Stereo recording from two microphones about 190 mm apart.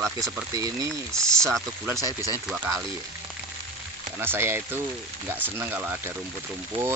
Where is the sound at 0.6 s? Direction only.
20° right (ahead or behind).